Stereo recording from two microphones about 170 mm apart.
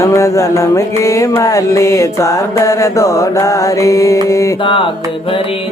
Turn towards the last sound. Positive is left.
turn(degrees=15)  # may be behind; listen again after turning